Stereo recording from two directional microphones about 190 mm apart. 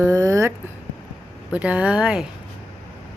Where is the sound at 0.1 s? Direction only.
15° right (ahead or behind).